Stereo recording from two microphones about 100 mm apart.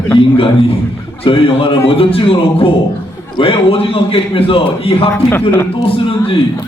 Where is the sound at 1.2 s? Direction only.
60° left (ahead or behind).